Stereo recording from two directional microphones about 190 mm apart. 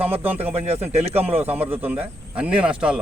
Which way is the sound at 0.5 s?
35° right (ahead or behind).